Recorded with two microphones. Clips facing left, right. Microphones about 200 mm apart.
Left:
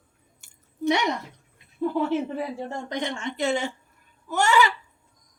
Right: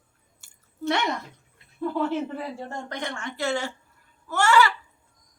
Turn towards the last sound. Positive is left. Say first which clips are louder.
# right 1 dB
turn(degrees=15)  # may be behind; listen again after turning